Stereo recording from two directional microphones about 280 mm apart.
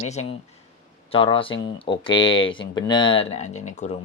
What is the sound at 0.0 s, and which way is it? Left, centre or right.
Speech, left.